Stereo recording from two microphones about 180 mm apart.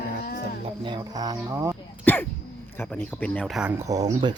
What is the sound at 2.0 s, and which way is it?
Speech, 10° left (ahead or behind).